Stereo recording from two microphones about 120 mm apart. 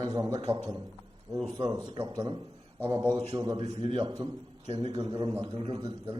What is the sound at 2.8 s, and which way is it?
Speech, 20° right (ahead or behind).